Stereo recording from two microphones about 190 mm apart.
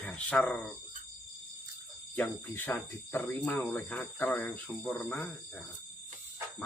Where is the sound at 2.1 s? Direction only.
10° left (ahead or behind).